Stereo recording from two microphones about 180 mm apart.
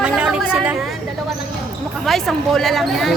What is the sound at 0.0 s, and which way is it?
Chatter, 5° right (ahead or behind).